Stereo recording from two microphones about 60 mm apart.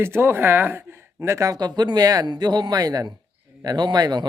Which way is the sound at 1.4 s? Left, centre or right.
Right.